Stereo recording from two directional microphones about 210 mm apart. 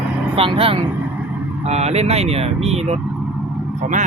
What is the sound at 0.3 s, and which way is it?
Speech, 25° right (ahead or behind).